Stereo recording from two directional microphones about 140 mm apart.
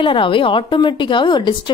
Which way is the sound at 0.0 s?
35° left (ahead or behind).